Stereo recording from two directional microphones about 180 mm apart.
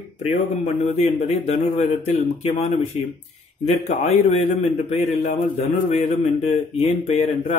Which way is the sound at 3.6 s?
40° left (ahead or behind).